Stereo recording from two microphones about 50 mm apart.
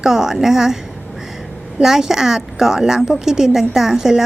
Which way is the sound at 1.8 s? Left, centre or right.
Centre.